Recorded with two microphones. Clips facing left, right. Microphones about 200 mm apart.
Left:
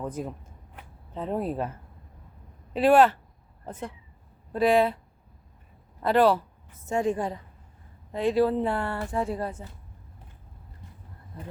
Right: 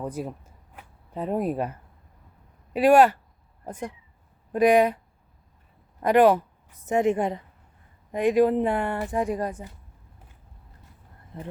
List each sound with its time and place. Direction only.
0.0 s speech: 10° right (ahead or behind)
2.7 s speech: 10° right (ahead or behind)
6.0 s a woman's voice: 15° right (ahead or behind)